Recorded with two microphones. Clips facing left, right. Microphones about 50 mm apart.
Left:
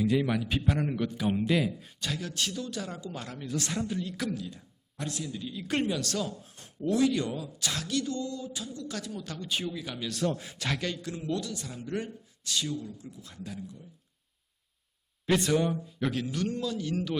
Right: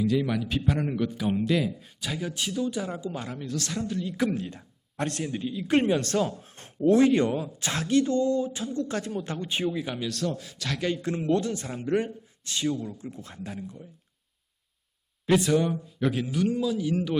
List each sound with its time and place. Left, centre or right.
0.0 s a man's voice: centre
2.0 s speech: centre
3.7 s a woman's voice: centre
4.4 s speech: right
5.5 s speech: centre
5.8 s speech: right; by 10.1 s centre
10.2 s a man's voice: left
10.8 s speech: centre
11.0 s speech: right
12.9 s speech: right
15.3 s a man's voice: centre